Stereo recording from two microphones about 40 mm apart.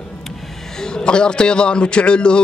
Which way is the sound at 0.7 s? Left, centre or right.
Centre.